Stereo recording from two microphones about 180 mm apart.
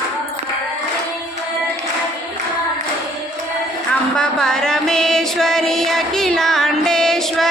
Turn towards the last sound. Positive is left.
turn(degrees=5)  # may be behind; listen again after turning